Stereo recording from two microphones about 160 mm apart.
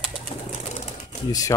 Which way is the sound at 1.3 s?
20° left (ahead or behind).